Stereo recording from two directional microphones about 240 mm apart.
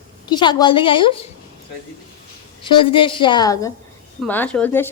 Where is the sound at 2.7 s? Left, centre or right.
Left.